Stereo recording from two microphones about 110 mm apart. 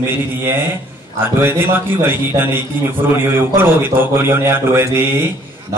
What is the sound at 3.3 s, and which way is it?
Speech, 20° right (ahead or behind).